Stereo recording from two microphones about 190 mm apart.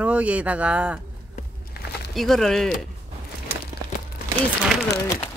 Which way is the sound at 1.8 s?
55° left (ahead or behind).